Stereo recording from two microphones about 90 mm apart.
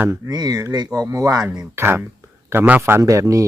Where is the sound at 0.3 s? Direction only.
50° right (ahead or behind).